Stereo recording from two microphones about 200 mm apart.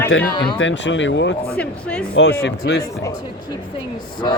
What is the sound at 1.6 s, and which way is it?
Speech, 5° left (ahead or behind).